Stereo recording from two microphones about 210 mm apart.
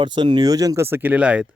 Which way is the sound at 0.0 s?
20° right (ahead or behind).